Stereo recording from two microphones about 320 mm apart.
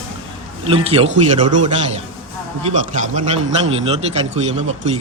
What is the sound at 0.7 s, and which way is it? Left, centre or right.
Speech, centre.